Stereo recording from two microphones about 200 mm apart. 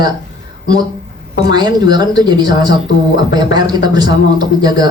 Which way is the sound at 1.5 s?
20° right (ahead or behind).